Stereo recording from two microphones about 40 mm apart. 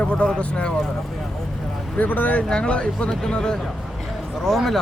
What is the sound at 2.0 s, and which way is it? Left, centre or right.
Speech, left.